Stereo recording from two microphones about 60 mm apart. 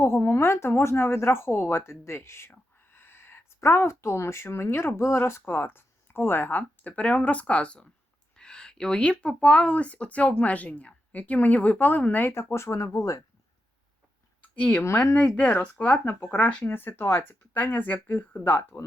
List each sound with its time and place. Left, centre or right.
0.0 s a woman's voice: left
12.4 s speech: left
14.6 s a woman's voice: centre
14.8 s speech: left
16.0 s a woman's voice: left
16.6 s speech: left